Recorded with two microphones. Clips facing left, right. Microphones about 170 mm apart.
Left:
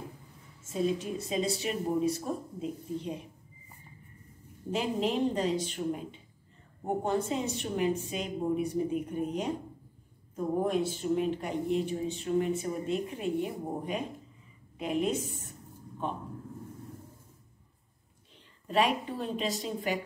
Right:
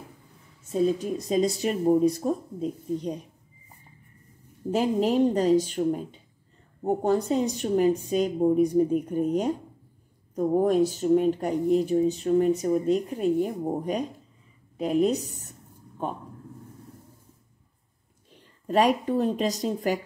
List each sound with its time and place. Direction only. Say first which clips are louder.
1.3 s a woman's voice: right 7 dB; 45° right (ahead or behind)
4.6 s speech: right 7 dB; 40° right (ahead or behind)
6.8 s speech: right 6 dB; 40° right (ahead or behind)
18.7 s speech: right 6 dB; 40° right (ahead or behind)